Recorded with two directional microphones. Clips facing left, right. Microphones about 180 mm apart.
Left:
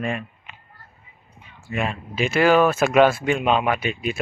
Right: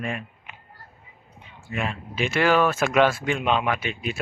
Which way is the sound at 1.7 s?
20° left (ahead or behind).